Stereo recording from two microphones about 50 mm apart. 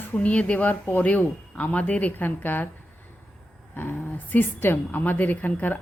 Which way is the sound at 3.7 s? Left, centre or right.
Left.